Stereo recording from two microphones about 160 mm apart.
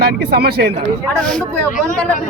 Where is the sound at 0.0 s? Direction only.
80° right.